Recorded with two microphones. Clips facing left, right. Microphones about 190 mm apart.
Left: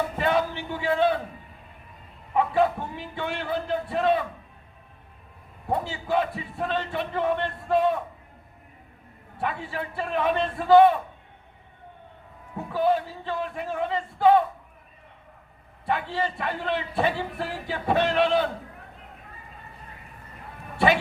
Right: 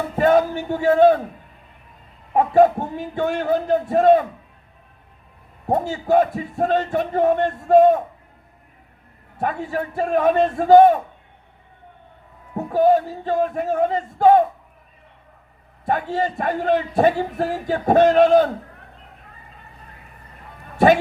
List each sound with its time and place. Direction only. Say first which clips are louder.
0.2 s a man's voice: right 11 dB; 45° right (ahead or behind)
2.3 s a man's voice: right 8 dB; 45° right (ahead or behind)
5.6 s a man's voice: right 7 dB; 45° right (ahead or behind)
9.4 s a man's voice: right 6 dB; 45° right (ahead or behind)
12.5 s a man's voice: right 7 dB; 45° right (ahead or behind)
15.9 s a man's voice: right 5 dB; 45° right (ahead or behind)
20.7 s speech: right 7 dB; 45° right (ahead or behind)